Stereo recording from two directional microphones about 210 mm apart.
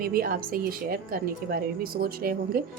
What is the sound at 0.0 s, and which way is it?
A woman's voice, 45° right (ahead or behind).